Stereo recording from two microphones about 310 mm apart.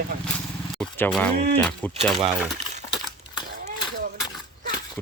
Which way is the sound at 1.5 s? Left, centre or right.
Centre.